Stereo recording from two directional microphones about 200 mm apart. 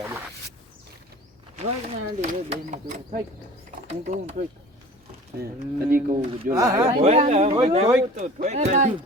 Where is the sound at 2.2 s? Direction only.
35° right (ahead or behind).